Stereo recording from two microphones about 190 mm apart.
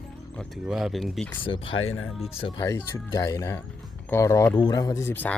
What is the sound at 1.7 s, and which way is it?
Speech, 90° left.